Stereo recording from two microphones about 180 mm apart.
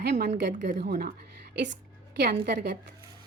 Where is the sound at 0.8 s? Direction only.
60° right (ahead or behind).